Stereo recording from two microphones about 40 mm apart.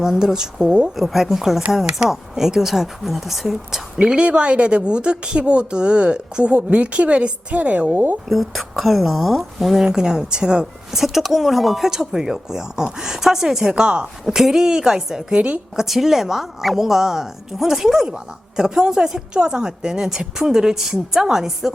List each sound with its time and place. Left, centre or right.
0.0 s a woman's voice: centre
0.9 s a woman's voice: centre
4.0 s a woman's voice: right
8.3 s a woman's voice: centre
9.8 s speech: centre
10.9 s a woman's voice: centre
11.9 s a woman's voice: centre
14.3 s a woman's voice: centre